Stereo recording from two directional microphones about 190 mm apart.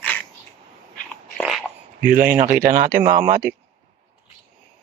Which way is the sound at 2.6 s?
45° right (ahead or behind).